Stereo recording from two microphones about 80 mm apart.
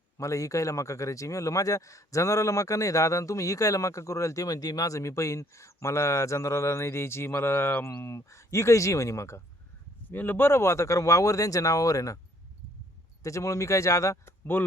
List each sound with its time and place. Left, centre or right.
0.2 s speech: left
10.1 s speech: left
13.2 s speech: left
14.5 s speech: left